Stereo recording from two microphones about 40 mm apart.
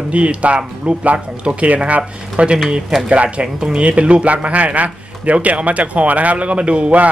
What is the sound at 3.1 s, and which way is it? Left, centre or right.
Speech, right.